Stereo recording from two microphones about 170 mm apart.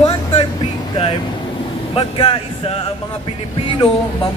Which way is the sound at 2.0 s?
30° left (ahead or behind).